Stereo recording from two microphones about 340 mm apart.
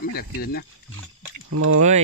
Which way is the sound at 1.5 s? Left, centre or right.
Right.